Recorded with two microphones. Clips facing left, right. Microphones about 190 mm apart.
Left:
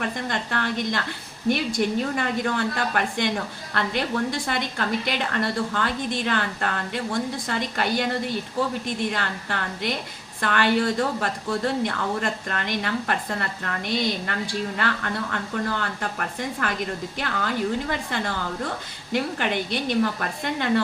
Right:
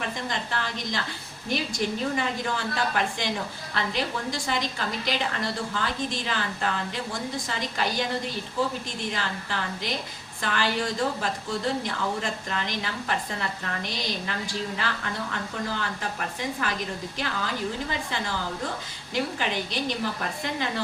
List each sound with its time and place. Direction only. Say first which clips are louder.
0.0 s a woman's voice: left 3 dB; 60° left (ahead or behind)